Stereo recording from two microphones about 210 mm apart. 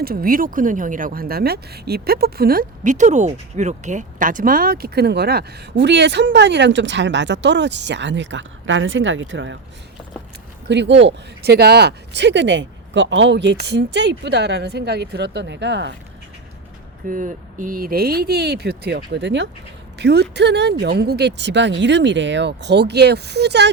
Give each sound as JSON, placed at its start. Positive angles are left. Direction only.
{"t": 0.0, "sound": "speech", "side_deg": -45}
{"t": 10.7, "sound": "speech", "side_deg": -55}
{"t": 17.1, "sound": "speech", "side_deg": -40}